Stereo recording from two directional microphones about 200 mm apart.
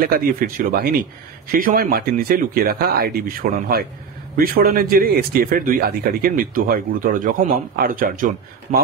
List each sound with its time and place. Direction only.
0.0 s a man's voice: 45° right (ahead or behind)